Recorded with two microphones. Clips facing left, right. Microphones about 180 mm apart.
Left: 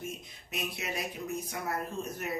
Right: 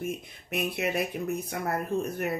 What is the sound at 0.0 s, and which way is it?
Speech, 60° right (ahead or behind).